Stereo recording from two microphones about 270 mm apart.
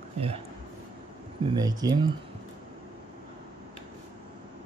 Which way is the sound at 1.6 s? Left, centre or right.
Centre.